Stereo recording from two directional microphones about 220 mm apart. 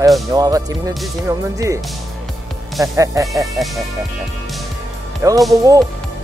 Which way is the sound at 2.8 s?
15° right (ahead or behind).